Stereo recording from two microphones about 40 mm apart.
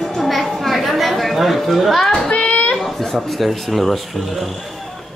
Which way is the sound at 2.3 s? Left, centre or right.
Left.